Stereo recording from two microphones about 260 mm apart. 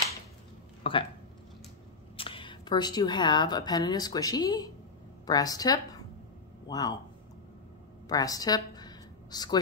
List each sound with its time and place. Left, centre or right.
0.8 s speech: left
2.1 s a woman's voice: centre
8.1 s speech: centre